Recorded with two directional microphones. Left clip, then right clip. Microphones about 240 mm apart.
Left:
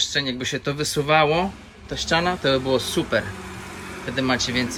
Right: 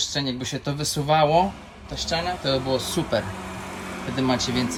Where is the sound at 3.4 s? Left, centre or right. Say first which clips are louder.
Right 2 dB; right.